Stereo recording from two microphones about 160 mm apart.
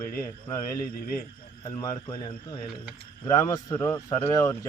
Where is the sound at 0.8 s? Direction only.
65° left (ahead or behind).